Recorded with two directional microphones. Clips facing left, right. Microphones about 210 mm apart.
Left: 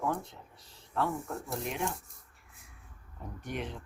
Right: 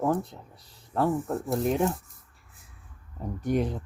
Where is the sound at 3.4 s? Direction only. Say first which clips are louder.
Right 12 dB; 40° right (ahead or behind).